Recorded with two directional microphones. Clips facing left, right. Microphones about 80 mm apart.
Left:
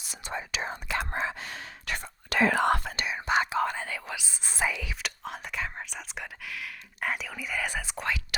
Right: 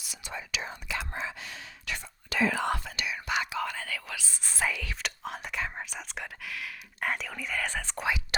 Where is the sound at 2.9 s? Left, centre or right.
Left.